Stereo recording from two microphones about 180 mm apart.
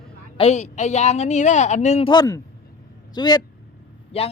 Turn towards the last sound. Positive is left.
turn(degrees=35)  # may be behind; listen again after turning